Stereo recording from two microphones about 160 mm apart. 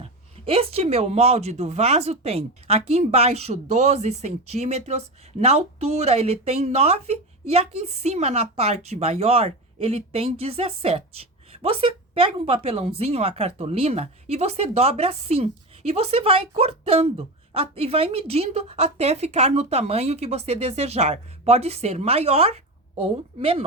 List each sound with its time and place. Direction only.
0.0 s speech: 35° right (ahead or behind)